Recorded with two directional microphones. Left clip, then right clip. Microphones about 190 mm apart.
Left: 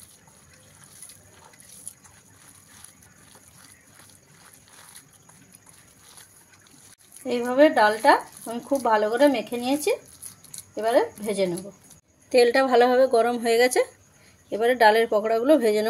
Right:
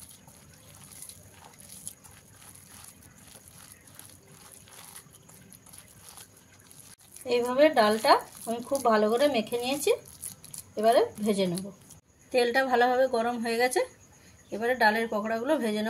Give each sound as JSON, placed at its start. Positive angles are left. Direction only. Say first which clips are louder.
{"t": 7.2, "sound": "speech", "louder": "left 4 dB", "side_deg": 30}
{"t": 12.3, "sound": "speech", "louder": "left 6 dB", "side_deg": 55}